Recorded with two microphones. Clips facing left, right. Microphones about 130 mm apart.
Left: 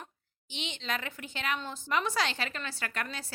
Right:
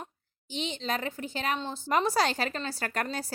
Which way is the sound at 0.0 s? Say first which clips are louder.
Right 5 dB; 35° right (ahead or behind).